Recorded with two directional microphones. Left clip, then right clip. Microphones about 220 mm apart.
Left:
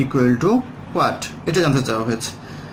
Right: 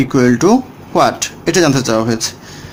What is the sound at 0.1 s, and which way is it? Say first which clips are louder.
Speech: right 6 dB; 45° right (ahead or behind).